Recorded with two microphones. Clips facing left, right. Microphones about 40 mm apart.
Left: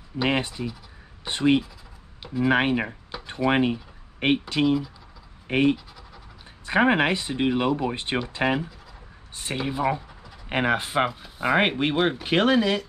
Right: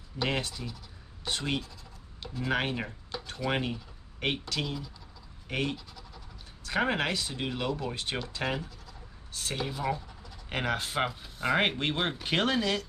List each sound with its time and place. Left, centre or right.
0.2 s speech: left